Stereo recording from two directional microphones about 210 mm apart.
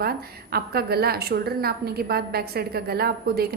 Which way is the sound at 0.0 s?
45° right (ahead or behind).